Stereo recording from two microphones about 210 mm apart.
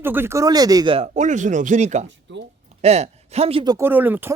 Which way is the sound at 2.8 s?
30° right (ahead or behind).